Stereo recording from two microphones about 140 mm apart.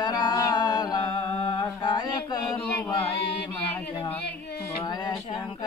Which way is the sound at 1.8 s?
30° left (ahead or behind).